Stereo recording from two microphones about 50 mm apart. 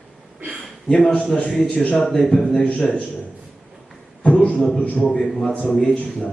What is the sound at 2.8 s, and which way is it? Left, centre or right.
Speech, left.